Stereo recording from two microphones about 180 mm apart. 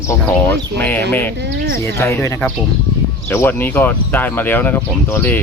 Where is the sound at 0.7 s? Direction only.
10° left (ahead or behind).